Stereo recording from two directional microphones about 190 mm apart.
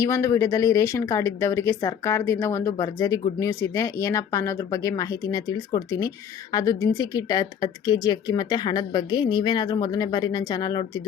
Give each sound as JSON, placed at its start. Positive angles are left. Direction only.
{"t": 0.0, "sound": "speech", "side_deg": 15}